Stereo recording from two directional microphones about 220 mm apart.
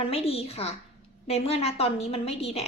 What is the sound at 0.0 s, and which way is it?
A woman's voice, 25° left (ahead or behind).